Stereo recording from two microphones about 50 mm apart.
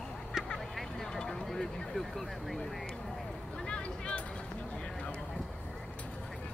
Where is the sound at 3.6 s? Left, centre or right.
Centre.